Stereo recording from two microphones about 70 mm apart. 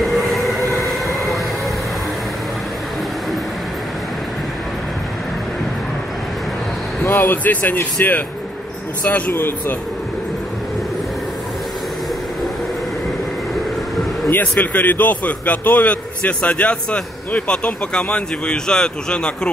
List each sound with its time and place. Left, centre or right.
0.0 s train: centre
7.0 s a man's voice: left
9.3 s a man's voice: left
14.3 s a man's voice: left